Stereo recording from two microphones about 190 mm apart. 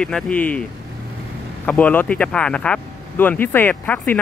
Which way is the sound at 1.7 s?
10° left (ahead or behind).